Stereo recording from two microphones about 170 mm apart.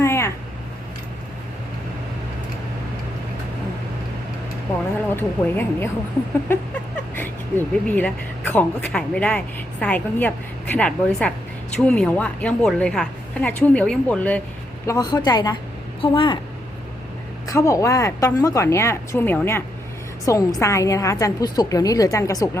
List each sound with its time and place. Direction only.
0.0 s a sound: 15° left (ahead or behind)
5.1 s a woman's voice: 15° left (ahead or behind)
7.2 s a woman's voice: 10° left (ahead or behind)
14.8 s a woman's voice: 20° left (ahead or behind)
17.4 s a woman's voice: 20° left (ahead or behind)